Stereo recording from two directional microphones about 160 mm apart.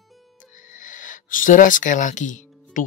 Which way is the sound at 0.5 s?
55° left (ahead or behind).